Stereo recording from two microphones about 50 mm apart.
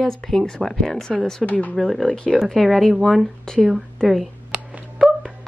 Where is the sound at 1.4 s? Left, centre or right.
Left.